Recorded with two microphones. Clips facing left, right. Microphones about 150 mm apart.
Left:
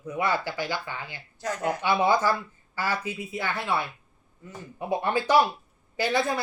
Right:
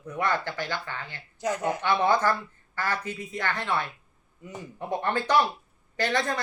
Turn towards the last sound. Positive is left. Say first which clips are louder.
# left 2 dB
turn(degrees=10)  # may be behind; listen again after turning